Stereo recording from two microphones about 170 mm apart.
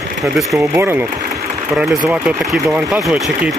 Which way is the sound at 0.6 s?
15° right (ahead or behind).